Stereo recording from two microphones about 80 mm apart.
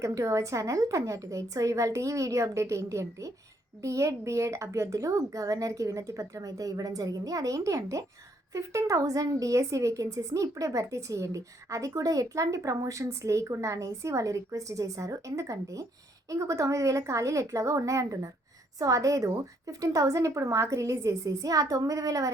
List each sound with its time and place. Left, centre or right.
0.0 s a woman's voice: right